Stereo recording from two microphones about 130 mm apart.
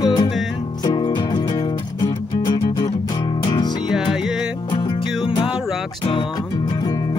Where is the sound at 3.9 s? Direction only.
5° right (ahead or behind).